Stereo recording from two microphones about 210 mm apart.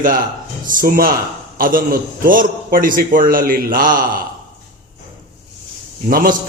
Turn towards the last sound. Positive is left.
turn(degrees=-45)  # may be behind; listen again after turning